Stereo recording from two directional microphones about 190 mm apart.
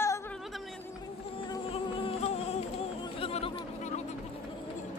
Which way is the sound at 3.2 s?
30° left (ahead or behind).